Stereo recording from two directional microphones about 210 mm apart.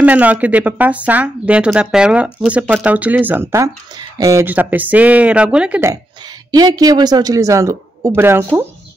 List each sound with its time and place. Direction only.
0.0 s speech: 5° right (ahead or behind)